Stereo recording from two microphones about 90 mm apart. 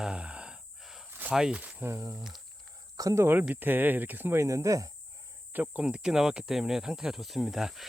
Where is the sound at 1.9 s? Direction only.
30° right (ahead or behind).